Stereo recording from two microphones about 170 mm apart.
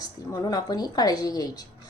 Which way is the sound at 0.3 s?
20° left (ahead or behind).